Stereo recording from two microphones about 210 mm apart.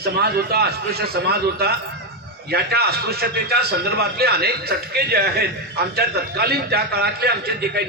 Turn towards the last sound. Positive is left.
turn(degrees=-50)  # may be behind; listen again after turning